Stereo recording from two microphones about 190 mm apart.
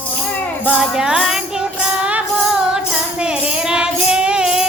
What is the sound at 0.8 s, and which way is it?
Music, 5° right (ahead or behind).